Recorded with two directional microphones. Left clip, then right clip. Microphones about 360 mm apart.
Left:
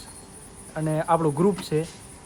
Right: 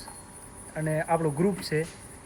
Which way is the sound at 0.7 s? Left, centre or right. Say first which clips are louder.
Left 4 dB; centre.